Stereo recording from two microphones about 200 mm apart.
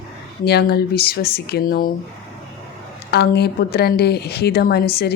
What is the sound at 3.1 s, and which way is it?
A woman's voice, 55° left (ahead or behind).